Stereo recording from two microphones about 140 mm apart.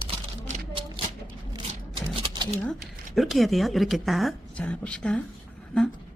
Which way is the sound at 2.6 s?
Centre (ahead or behind).